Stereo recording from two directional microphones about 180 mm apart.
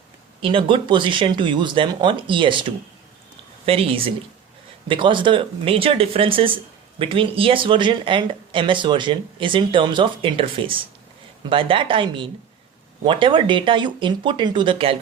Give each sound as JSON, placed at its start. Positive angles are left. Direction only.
{"t": 0.4, "sound": "speech", "side_deg": -30}